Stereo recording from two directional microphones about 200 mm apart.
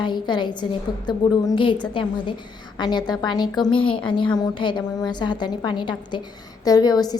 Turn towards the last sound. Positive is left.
turn(degrees=20)  # may be behind; listen again after turning